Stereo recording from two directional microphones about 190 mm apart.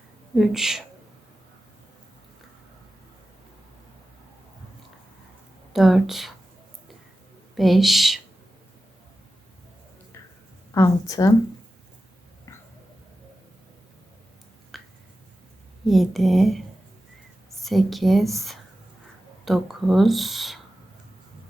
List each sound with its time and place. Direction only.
0.3 s speech: centre (ahead or behind)
5.7 s speech: centre (ahead or behind)
7.5 s speech: centre (ahead or behind)
10.8 s a woman's voice: 20° left (ahead or behind)
12.5 s a sound: 15° left (ahead or behind)
14.7 s a sound: centre (ahead or behind)
15.9 s speech: centre (ahead or behind)